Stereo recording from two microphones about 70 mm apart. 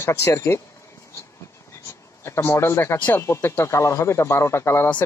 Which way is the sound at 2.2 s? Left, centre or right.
Left.